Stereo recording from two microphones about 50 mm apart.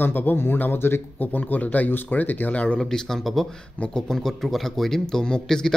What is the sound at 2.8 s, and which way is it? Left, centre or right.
A man's voice, centre.